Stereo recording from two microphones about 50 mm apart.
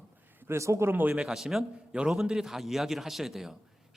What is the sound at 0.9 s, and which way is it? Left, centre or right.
Speech, right.